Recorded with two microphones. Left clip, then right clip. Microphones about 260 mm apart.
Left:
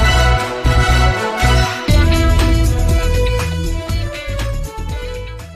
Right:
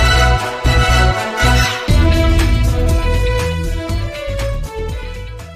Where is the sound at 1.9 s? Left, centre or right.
Centre.